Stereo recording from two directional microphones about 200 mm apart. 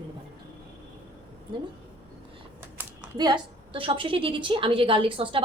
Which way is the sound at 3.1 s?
20° right (ahead or behind).